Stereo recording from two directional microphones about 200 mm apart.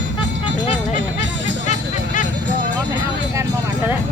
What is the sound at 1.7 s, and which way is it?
Music, 40° left (ahead or behind).